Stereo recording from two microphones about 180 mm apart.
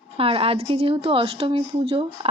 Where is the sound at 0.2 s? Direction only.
30° right (ahead or behind).